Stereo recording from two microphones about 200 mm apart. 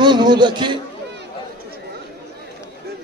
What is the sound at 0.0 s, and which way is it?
Speech, 20° right (ahead or behind).